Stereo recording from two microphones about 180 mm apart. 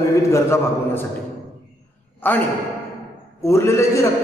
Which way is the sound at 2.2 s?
10° left (ahead or behind).